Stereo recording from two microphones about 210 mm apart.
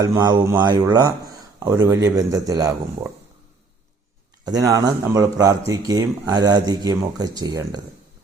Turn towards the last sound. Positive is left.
turn(degrees=-15)  # may be behind; listen again after turning